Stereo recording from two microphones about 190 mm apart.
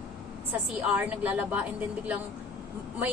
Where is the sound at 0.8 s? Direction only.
10° right (ahead or behind).